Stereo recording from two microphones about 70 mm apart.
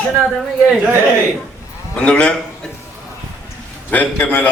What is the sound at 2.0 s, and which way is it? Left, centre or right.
Speech, centre.